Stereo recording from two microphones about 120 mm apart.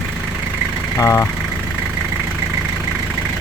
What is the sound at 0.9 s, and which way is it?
Speech, 25° left (ahead or behind).